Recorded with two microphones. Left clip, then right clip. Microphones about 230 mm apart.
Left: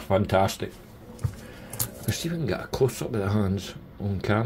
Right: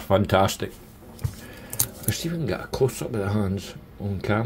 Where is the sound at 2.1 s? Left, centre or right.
Centre.